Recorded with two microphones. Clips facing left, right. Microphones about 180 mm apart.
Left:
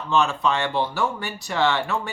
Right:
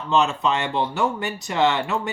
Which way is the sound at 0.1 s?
20° right (ahead or behind).